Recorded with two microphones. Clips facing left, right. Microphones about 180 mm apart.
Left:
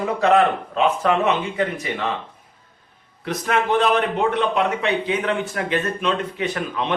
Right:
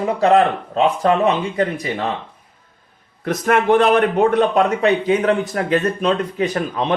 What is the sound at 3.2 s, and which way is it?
A man's voice, 50° right (ahead or behind).